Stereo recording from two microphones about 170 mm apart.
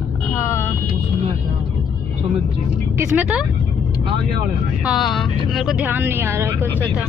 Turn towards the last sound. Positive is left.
turn(degrees=-15)  # may be behind; listen again after turning